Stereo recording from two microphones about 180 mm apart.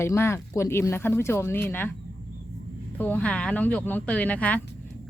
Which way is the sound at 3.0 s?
10° left (ahead or behind).